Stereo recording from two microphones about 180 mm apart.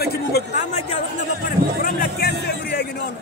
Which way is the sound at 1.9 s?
60° left (ahead or behind).